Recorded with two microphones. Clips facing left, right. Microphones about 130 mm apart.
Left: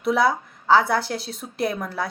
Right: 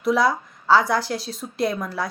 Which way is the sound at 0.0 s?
60° left (ahead or behind).